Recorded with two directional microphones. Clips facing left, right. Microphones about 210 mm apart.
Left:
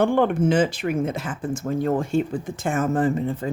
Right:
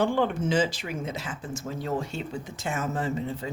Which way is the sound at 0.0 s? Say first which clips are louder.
Left 6 dB; 55° left (ahead or behind).